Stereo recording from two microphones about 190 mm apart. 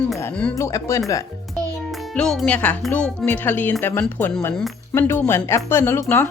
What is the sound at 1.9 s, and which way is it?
A woman's voice, centre (ahead or behind).